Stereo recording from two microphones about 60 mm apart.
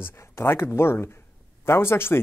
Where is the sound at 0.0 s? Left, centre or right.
Left.